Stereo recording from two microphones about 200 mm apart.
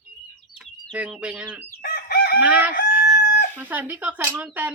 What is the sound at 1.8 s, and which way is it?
Chicken, 50° left (ahead or behind).